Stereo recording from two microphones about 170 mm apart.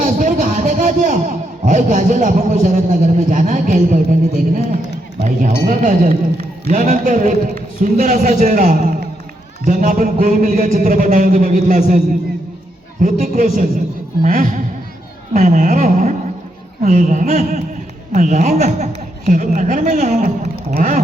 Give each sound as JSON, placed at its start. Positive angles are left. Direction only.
{"t": 0.0, "sound": "a man's voice", "side_deg": -50}
{"t": 5.2, "sound": "a man's voice", "side_deg": -50}
{"t": 18.8, "sound": "a man's voice", "side_deg": -45}